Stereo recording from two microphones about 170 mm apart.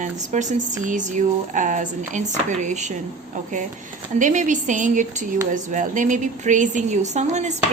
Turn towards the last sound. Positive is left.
turn(degrees=-45)  # may be behind; listen again after turning